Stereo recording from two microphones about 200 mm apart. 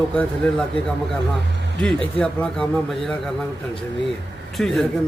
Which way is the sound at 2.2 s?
5° left (ahead or behind).